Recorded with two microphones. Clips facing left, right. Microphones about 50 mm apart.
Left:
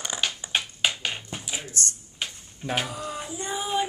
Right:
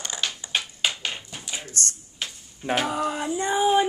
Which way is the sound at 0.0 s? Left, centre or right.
Centre.